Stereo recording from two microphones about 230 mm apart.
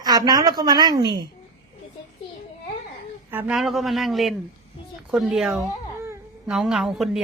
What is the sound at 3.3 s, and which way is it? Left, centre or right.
A woman's voice, centre.